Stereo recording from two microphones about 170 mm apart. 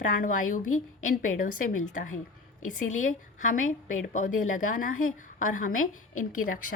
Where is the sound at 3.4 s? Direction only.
50° left (ahead or behind).